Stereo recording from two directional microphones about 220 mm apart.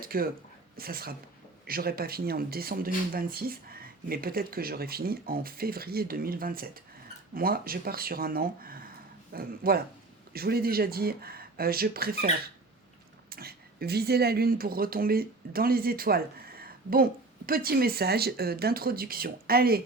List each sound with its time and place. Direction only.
0.0 s speech: 40° right (ahead or behind)
13.3 s speech: 45° right (ahead or behind)